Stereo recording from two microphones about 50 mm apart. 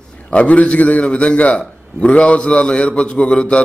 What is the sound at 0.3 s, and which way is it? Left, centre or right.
A man's voice, left.